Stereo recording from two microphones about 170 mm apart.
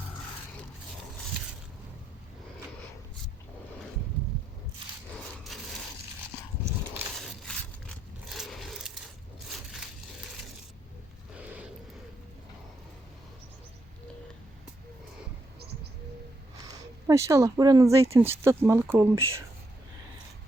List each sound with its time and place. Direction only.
5.5 s crushing: centre (ahead or behind)
7.2 s crushing: centre (ahead or behind)
8.3 s scrape: centre (ahead or behind)
16.7 s speech: 20° right (ahead or behind)